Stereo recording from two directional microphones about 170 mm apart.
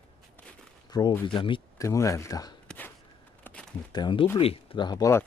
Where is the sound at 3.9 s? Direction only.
30° left (ahead or behind).